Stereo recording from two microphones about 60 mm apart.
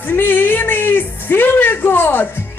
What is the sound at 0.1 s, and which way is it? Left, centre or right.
Music, left.